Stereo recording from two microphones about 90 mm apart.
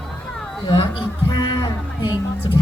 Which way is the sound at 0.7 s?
65° left (ahead or behind).